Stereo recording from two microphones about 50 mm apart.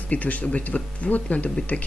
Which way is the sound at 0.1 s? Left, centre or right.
Left.